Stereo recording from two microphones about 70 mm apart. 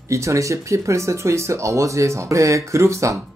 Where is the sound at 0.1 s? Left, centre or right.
Right.